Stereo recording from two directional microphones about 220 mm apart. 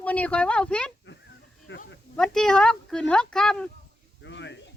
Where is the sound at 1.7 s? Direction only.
55° left (ahead or behind).